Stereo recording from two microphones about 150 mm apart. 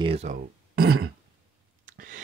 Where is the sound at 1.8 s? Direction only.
65° right (ahead or behind).